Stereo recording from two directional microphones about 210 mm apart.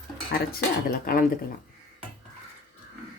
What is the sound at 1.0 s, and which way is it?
Speech, 40° left (ahead or behind).